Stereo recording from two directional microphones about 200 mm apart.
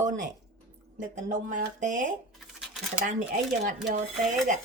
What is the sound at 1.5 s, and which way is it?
Speech, 40° right (ahead or behind).